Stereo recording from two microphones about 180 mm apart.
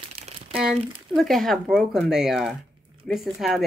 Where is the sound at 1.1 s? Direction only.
Centre (ahead or behind).